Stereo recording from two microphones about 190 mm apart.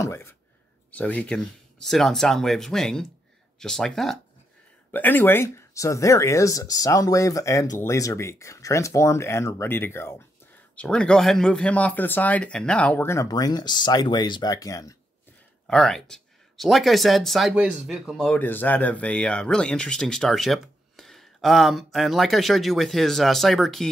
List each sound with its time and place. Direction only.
0.0 s a sound: 15° left (ahead or behind)
0.9 s speech: 10° left (ahead or behind)
15.6 s speech: 5° left (ahead or behind)